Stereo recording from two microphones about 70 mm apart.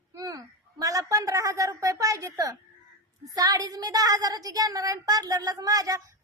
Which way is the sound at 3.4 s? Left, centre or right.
Right.